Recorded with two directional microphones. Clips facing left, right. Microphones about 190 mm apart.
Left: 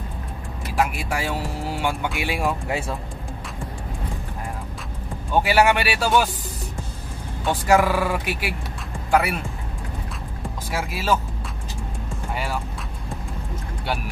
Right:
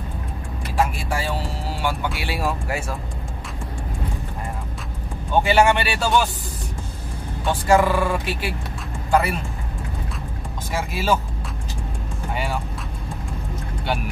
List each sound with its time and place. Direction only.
0.9 s speech: 15° left (ahead or behind)
5.3 s speech: 5° left (ahead or behind)
7.4 s speech: 10° left (ahead or behind)
10.7 s speech: centre (ahead or behind)